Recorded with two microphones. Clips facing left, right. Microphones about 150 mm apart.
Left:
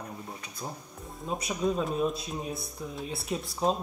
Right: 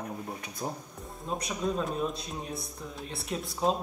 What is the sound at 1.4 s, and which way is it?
Speech, 5° left (ahead or behind).